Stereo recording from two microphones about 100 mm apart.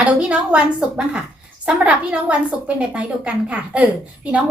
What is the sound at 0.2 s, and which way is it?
A woman's voice, 10° right (ahead or behind).